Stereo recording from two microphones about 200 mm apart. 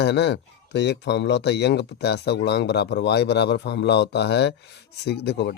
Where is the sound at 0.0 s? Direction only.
60° left (ahead or behind).